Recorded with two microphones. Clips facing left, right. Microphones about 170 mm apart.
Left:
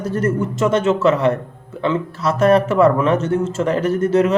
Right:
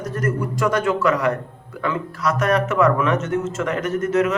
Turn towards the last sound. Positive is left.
turn(degrees=30)  # may be behind; listen again after turning